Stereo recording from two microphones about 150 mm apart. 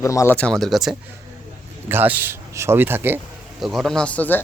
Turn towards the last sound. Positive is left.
turn(degrees=10)  # may be behind; listen again after turning